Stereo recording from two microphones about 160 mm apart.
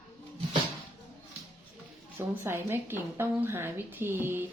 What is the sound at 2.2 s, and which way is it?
A woman's voice, 15° right (ahead or behind).